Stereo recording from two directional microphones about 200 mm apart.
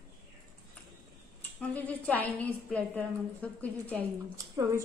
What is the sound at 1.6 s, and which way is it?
A woman's voice, 10° left (ahead or behind).